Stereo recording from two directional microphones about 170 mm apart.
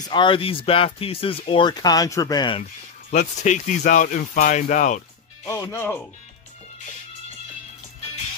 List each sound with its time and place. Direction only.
0.1 s speech: 30° left (ahead or behind)
3.1 s speech: 45° left (ahead or behind)
5.5 s speech: 15° left (ahead or behind)